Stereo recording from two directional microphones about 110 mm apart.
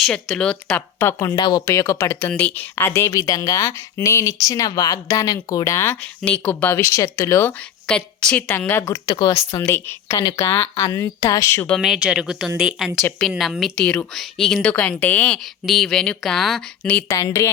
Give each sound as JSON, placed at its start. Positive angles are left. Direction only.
{"t": 0.0, "sound": "speech", "side_deg": 5}
{"t": 0.9, "sound": "speech", "side_deg": 25}
{"t": 1.4, "sound": "speech", "side_deg": 40}
{"t": 1.6, "sound": "speech", "side_deg": 25}
{"t": 7.4, "sound": "a woman's voice", "side_deg": 10}
{"t": 8.4, "sound": "speech", "side_deg": 20}
{"t": 9.0, "sound": "speech", "side_deg": 40}
{"t": 9.6, "sound": "speech", "side_deg": 20}
{"t": 11.8, "sound": "speech", "side_deg": -5}
{"t": 13.7, "sound": "speech", "side_deg": 10}
{"t": 15.6, "sound": "speech", "side_deg": 0}
{"t": 17.1, "sound": "speech", "side_deg": 30}